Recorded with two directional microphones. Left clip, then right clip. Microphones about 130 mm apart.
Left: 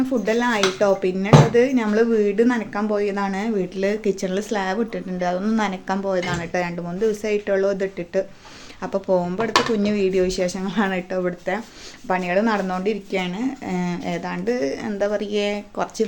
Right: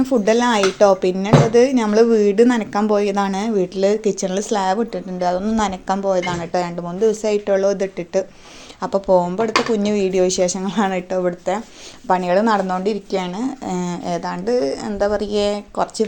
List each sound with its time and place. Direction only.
0.0 s speech: 55° right (ahead or behind); by 16.0 s 25° right (ahead or behind)